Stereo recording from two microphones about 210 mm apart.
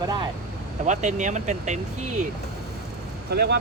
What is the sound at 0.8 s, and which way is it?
Speech, 35° right (ahead or behind).